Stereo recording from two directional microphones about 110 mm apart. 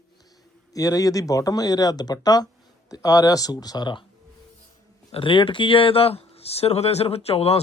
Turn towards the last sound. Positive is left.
turn(degrees=65)  # may be behind; listen again after turning